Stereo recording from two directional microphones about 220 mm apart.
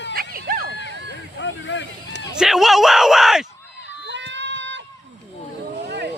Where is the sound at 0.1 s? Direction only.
40° right (ahead or behind).